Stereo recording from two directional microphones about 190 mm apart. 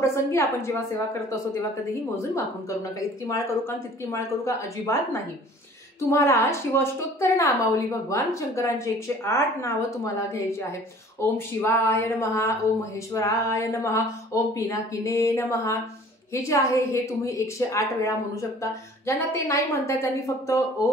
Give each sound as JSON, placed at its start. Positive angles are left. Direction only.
{"t": 0.0, "sound": "a woman's voice", "side_deg": 15}
{"t": 4.1, "sound": "a woman's voice", "side_deg": 15}